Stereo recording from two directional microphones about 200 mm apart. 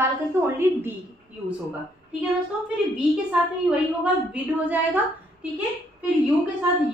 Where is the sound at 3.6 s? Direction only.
5° right (ahead or behind).